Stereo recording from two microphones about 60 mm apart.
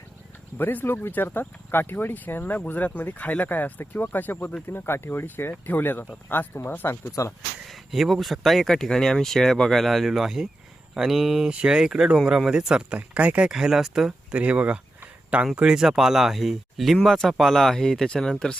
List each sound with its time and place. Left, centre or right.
0.6 s speech: left
7.0 s speech: left
7.6 s speech: centre; by 13.5 s right
13.5 s speech: centre
14.3 s a sound: right
15.5 s speech: centre